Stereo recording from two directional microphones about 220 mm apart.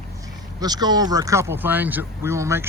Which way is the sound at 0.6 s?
20° right (ahead or behind).